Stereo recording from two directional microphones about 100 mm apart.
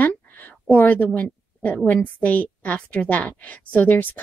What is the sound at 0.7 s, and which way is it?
A woman's voice, 15° left (ahead or behind).